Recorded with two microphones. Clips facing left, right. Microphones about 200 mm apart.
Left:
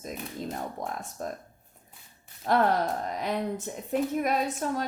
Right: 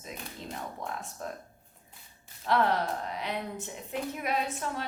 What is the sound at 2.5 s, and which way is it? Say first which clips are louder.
Speech: left 3 dB; 45° left (ahead or behind).